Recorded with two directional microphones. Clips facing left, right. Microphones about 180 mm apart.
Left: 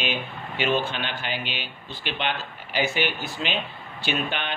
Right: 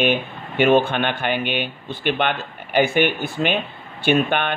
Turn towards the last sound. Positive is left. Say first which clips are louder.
# right 9 dB
turn(degrees=-55)  # may be behind; listen again after turning